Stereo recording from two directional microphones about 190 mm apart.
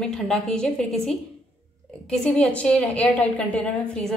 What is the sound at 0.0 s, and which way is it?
A woman's voice, 5° left (ahead or behind).